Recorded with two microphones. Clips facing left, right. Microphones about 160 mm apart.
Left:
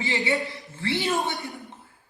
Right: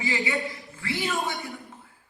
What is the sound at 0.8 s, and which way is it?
Speech, 30° left (ahead or behind).